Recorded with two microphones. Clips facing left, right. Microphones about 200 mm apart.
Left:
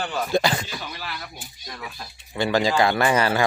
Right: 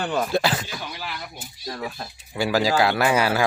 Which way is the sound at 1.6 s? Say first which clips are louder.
Right 7 dB; 35° right (ahead or behind).